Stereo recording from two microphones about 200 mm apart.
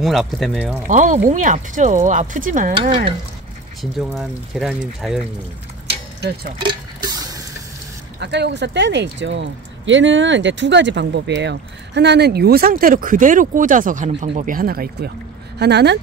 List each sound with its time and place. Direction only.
0.0 s speech: centre (ahead or behind)
0.8 s speech: 40° right (ahead or behind)
2.7 s stir: 25° right (ahead or behind)
3.8 s speech: centre (ahead or behind)
5.9 s a sound: 55° right (ahead or behind)
6.7 s a sound: 20° right (ahead or behind)
8.2 s speech: 60° right (ahead or behind)